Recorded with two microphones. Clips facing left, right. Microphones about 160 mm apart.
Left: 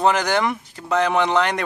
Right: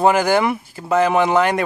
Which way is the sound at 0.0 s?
10° right (ahead or behind).